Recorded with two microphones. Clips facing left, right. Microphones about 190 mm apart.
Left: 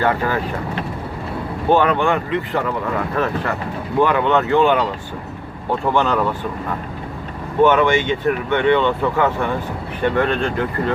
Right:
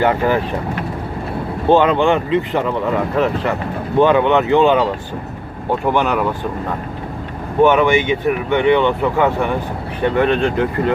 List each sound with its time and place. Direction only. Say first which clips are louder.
0.0 s speech: right 4 dB; 20° right (ahead or behind)
1.7 s speech: right 3 dB; 20° right (ahead or behind)
5.8 s speech: right 1 dB; 15° right (ahead or behind)
7.6 s speech: right 2 dB; 15° right (ahead or behind)